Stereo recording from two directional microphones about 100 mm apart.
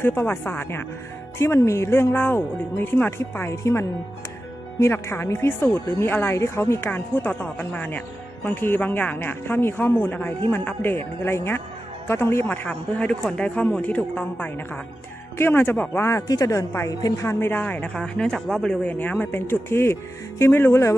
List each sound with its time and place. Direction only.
0.0 s speech: 20° left (ahead or behind)
12.6 s speech: 10° left (ahead or behind); by 17.3 s 35° left (ahead or behind)
17.3 s speech: 20° left (ahead or behind)